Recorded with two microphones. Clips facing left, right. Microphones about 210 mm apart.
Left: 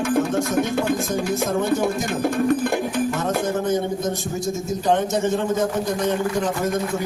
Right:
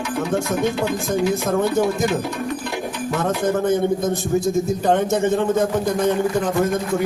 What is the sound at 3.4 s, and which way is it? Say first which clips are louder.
A man's voice: right 6 dB; 55° right (ahead or behind).